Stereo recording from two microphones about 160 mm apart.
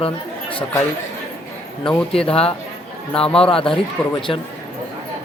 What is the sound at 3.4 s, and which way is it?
Speech, 35° left (ahead or behind).